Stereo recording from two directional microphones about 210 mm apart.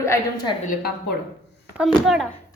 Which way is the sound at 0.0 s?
15° left (ahead or behind).